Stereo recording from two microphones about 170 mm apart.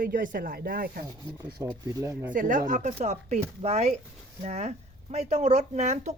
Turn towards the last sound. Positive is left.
turn(degrees=-45)  # may be behind; listen again after turning